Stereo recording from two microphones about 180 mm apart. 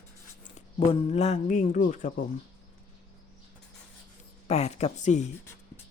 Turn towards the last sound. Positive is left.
turn(degrees=40)  # may be behind; listen again after turning